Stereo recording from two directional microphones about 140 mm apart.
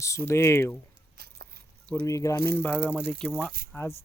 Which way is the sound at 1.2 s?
90° right.